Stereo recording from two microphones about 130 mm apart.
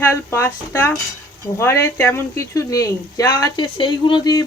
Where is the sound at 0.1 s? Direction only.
15° left (ahead or behind).